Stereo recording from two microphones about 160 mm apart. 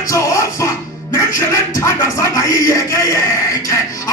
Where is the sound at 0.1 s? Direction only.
20° left (ahead or behind).